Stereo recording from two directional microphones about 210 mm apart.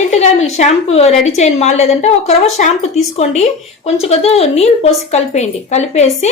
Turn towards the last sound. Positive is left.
turn(degrees=30)  # may be behind; listen again after turning